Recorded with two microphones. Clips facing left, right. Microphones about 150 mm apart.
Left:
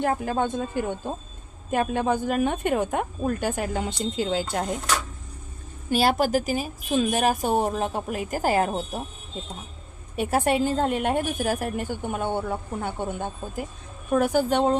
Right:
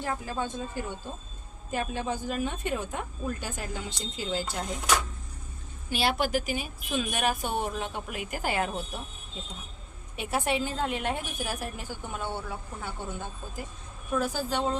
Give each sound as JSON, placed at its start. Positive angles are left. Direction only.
{"t": 0.0, "sound": "speech", "side_deg": 60}
{"t": 5.9, "sound": "a woman's voice", "side_deg": 40}
{"t": 10.2, "sound": "a woman's voice", "side_deg": 45}